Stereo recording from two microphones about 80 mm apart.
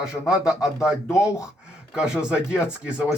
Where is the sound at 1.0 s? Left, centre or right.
Left.